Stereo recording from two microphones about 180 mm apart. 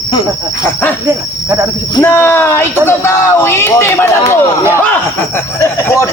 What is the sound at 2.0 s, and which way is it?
Speech, 15° left (ahead or behind).